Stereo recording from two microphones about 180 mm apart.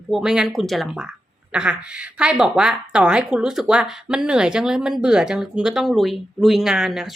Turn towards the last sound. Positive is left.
turn(degrees=0)  # may be behind; listen again after turning